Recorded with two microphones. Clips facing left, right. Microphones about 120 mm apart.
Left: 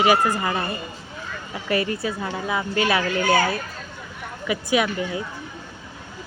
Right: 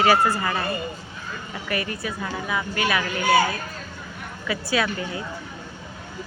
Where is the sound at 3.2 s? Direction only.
10° right (ahead or behind).